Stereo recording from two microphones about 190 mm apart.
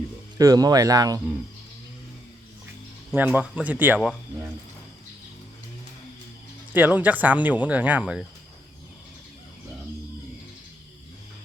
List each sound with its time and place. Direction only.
0.3 s speech: 20° right (ahead or behind)
3.2 s speech: 10° right (ahead or behind)
6.7 s speech: 10° right (ahead or behind)